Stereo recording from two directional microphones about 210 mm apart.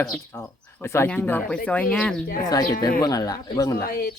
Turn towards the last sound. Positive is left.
turn(degrees=45)  # may be behind; listen again after turning